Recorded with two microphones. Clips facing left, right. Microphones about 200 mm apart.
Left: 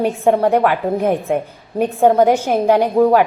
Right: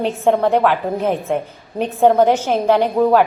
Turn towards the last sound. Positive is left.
turn(degrees=10)  # may be behind; listen again after turning